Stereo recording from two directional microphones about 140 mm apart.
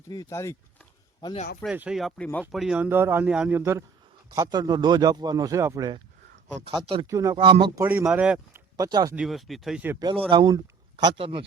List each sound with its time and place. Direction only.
0.1 s speech: 25° left (ahead or behind)
1.6 s speech: 5° right (ahead or behind)
2.0 s speech: 5° left (ahead or behind); by 5.9 s 20° right (ahead or behind)
6.7 s speech: 40° right (ahead or behind)
7.1 s speech: 20° right (ahead or behind)
7.3 s speech: 35° right (ahead or behind)
7.8 s speech: 15° right (ahead or behind)
8.7 s speech: 30° right (ahead or behind)
9.1 s speech: centre (ahead or behind)
10.0 s speech: 35° right (ahead or behind)